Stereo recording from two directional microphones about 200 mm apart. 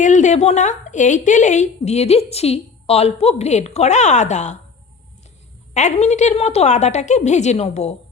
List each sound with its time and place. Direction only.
0.0 s a woman's voice: 35° left (ahead or behind)
5.7 s a woman's voice: 35° left (ahead or behind)